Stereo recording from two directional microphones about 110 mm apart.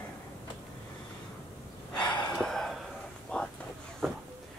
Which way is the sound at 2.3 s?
5° left (ahead or behind).